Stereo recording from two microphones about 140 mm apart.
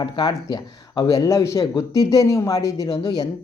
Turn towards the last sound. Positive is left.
turn(degrees=30)  # may be behind; listen again after turning